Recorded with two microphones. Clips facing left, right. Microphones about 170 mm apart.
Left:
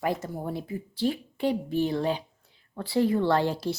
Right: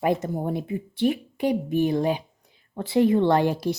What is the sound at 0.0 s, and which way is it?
Speech, 20° right (ahead or behind).